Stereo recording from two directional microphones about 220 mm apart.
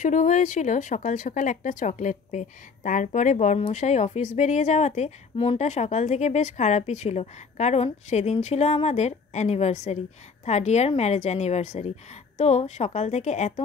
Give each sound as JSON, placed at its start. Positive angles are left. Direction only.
{"t": 0.0, "sound": "speech", "side_deg": 35}